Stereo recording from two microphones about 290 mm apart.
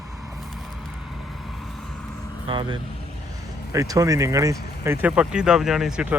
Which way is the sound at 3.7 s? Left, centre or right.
Centre.